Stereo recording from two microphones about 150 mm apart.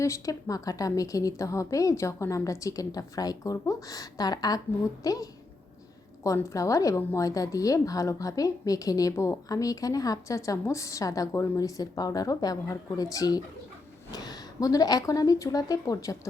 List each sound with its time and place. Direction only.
0.0 s a woman's voice: 20° left (ahead or behind)